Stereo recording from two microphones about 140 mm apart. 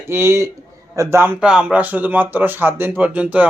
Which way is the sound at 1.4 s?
5° right (ahead or behind).